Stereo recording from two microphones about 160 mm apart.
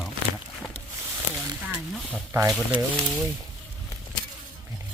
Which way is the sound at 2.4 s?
Centre (ahead or behind).